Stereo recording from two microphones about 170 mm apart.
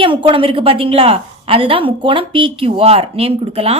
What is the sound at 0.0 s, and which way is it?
A woman's voice, 30° right (ahead or behind).